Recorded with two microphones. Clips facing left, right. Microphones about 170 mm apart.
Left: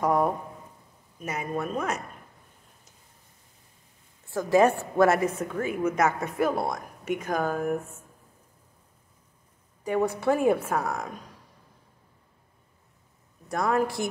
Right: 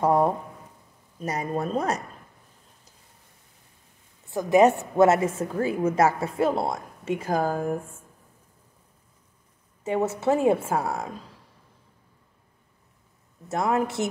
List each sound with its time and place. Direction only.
0.0 s a sound: 30° right (ahead or behind)
1.2 s speech: 35° right (ahead or behind)
4.3 s a woman's voice: 20° right (ahead or behind)
9.8 s a woman's voice: 25° right (ahead or behind)
13.5 s a woman's voice: 20° right (ahead or behind)